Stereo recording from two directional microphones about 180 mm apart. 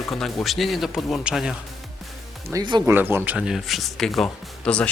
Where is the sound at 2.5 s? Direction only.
25° right (ahead or behind).